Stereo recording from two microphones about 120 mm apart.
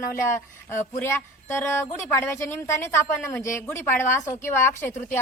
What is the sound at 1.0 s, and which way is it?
Speech, 20° left (ahead or behind).